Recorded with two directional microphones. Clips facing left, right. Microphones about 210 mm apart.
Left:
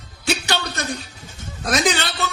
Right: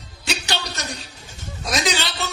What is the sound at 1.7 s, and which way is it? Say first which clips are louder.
Speech: left 3 dB; 55° left (ahead or behind).